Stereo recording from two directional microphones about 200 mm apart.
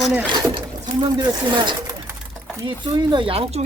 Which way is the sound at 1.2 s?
20° right (ahead or behind).